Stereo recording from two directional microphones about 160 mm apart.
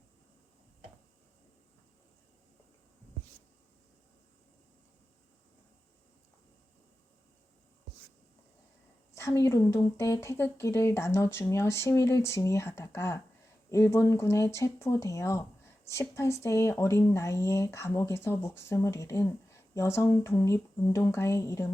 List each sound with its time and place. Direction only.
9.1 s speech: 20° left (ahead or behind)